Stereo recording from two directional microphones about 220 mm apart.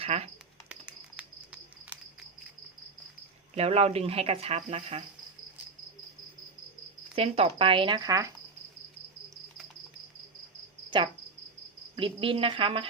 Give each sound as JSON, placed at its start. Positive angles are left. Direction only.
{"t": 0.0, "sound": "speech", "side_deg": -30}
{"t": 0.7, "sound": "a sound", "side_deg": -5}
{"t": 3.5, "sound": "speech", "side_deg": -30}
{"t": 7.2, "sound": "speech", "side_deg": -25}
{"t": 11.9, "sound": "speech", "side_deg": -25}